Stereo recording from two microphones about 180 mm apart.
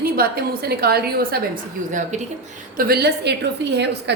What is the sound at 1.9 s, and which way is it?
Speech, 40° right (ahead or behind).